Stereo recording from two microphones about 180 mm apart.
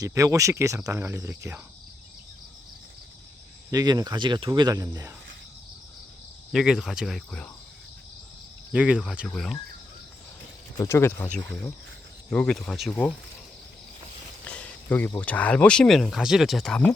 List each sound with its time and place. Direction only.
0.0 s speech: 15° right (ahead or behind)
3.7 s speech: 20° right (ahead or behind)
6.5 s speech: centre (ahead or behind)
8.7 s speech: 5° right (ahead or behind)
10.8 s speech: 15° left (ahead or behind)
14.4 s a sound: 5° left (ahead or behind)
15.2 s speech: 10° left (ahead or behind)